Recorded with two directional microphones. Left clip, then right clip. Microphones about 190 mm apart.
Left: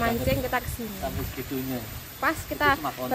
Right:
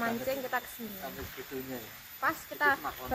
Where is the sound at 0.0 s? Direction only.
10° left (ahead or behind).